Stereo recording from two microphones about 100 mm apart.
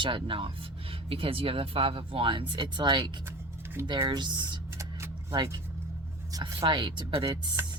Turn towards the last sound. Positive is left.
turn(degrees=-45)  # may be behind; listen again after turning